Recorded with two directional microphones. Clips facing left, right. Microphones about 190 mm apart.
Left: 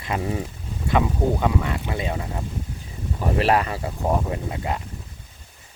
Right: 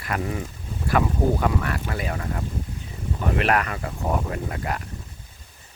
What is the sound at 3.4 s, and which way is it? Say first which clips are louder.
Speech: left 4 dB; 25° left (ahead or behind).